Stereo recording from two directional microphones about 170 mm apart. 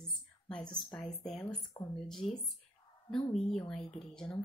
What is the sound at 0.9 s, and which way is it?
Speech, centre (ahead or behind).